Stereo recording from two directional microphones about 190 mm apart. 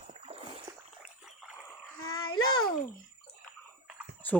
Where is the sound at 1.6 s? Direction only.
20° left (ahead or behind).